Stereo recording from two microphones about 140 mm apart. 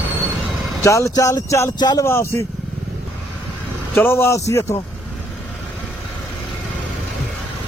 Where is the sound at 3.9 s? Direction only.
15° left (ahead or behind).